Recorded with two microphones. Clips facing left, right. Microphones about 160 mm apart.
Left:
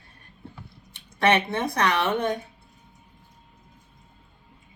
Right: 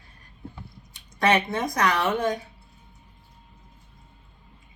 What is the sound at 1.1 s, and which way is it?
A woman's voice, 30° left (ahead or behind).